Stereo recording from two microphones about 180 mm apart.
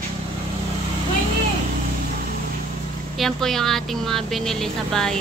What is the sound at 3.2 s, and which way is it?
Speech, centre (ahead or behind).